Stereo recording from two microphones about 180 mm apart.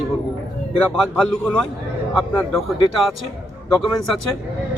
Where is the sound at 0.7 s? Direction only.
5° left (ahead or behind).